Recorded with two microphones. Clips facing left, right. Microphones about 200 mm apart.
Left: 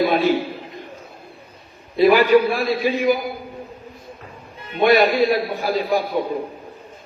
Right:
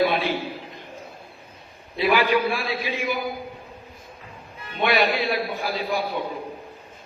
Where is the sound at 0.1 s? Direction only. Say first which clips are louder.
Left 7 dB; 45° left (ahead or behind).